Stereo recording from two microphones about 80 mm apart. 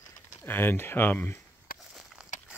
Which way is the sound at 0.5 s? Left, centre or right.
Left.